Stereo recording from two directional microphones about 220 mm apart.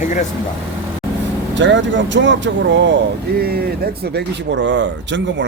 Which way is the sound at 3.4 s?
45° right (ahead or behind).